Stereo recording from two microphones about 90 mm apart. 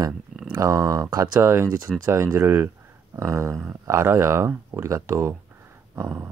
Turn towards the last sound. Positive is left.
turn(degrees=-35)  # may be behind; listen again after turning